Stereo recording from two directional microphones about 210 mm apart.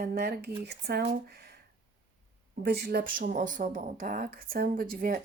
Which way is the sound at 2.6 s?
50° right (ahead or behind).